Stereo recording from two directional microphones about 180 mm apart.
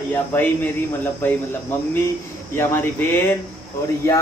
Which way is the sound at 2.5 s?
15° left (ahead or behind).